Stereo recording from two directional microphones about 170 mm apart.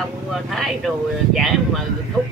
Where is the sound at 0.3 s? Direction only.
Centre (ahead or behind).